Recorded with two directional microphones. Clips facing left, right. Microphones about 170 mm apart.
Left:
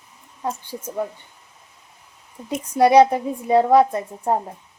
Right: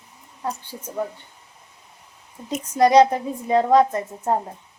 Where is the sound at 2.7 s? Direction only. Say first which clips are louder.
Left 1 dB; 10° left (ahead or behind).